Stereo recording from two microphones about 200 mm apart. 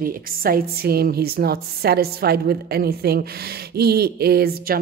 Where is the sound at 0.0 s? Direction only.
45° right (ahead or behind).